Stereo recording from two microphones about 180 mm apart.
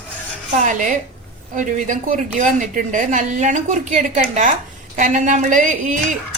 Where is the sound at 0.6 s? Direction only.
45° right (ahead or behind).